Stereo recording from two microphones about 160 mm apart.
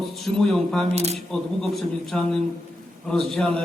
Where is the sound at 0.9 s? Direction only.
40° right (ahead or behind).